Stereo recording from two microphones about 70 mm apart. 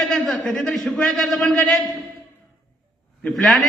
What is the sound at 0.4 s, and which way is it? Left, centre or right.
Speech, centre.